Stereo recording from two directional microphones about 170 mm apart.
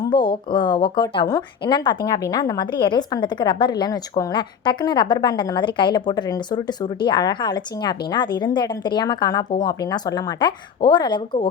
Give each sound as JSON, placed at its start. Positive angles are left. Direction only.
{"t": 0.0, "sound": "a woman's voice", "side_deg": 25}